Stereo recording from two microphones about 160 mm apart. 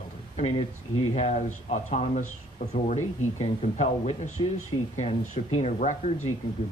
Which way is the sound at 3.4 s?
45° left (ahead or behind).